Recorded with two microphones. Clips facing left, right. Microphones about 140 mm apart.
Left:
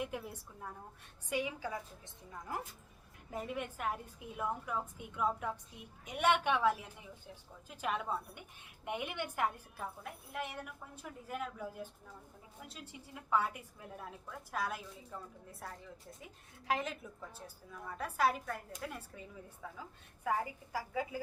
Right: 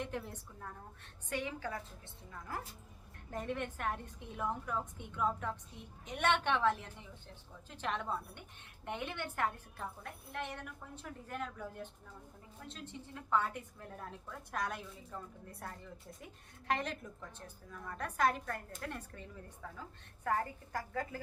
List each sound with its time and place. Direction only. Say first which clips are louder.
0.0 s a woman's voice: even; 10° left (ahead or behind)